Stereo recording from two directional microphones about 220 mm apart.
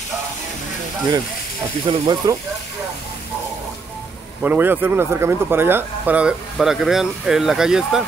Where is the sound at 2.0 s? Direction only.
20° right (ahead or behind).